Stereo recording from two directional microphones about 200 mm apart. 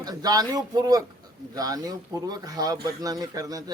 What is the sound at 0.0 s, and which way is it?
A man's voice, 20° right (ahead or behind).